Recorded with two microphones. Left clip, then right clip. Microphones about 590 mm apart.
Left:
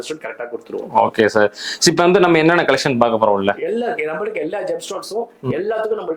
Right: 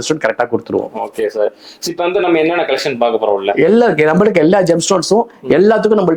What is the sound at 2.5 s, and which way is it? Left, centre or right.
Speech, left.